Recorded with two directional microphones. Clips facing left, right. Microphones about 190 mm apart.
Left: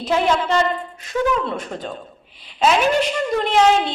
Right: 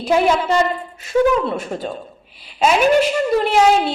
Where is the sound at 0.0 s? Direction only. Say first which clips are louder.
Right 3 dB; 10° right (ahead or behind).